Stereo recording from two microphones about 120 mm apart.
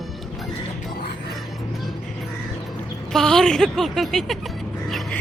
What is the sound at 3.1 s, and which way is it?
Speech, 5° left (ahead or behind).